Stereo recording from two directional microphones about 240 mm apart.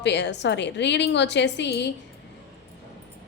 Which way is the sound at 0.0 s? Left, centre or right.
Left.